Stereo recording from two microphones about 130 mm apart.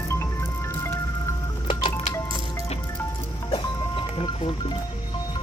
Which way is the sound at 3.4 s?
40° left (ahead or behind).